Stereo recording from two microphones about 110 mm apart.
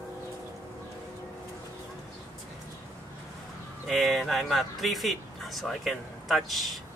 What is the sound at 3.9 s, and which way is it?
Speech, centre (ahead or behind).